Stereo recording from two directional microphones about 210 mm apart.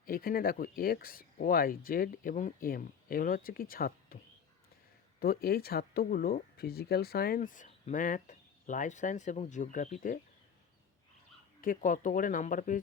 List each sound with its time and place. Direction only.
0.0 s speech: 45° left (ahead or behind)
5.2 s speech: 45° left (ahead or behind)
11.6 s speech: 40° left (ahead or behind)